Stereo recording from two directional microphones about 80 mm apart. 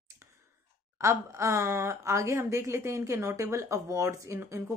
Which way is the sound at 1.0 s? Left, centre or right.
Right.